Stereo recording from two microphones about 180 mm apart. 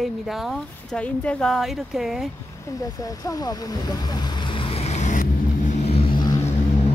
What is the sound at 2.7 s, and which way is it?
Speech, 20° left (ahead or behind).